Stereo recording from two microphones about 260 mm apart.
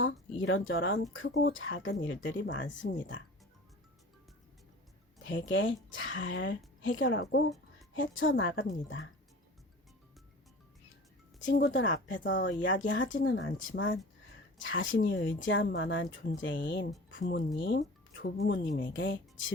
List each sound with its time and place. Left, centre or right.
0.4 s speech: left
5.3 s speech: left
11.3 s speech: left